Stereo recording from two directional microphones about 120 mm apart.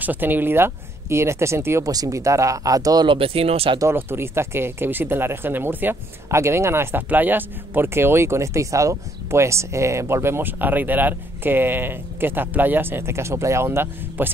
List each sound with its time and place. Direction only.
0.0 s speech: 15° right (ahead or behind); by 3.1 s 30° right (ahead or behind)
3.1 s speech: 50° right (ahead or behind)
3.9 s speech: 20° right (ahead or behind)